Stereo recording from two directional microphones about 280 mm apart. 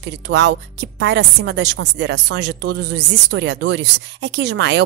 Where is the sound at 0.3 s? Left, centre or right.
Right.